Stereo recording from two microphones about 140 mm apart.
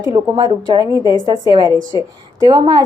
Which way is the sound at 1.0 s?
30° left (ahead or behind).